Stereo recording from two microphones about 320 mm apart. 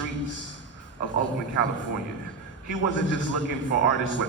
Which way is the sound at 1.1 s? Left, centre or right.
Left.